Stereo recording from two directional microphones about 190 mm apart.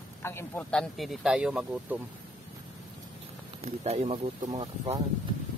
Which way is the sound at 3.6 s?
35° right (ahead or behind).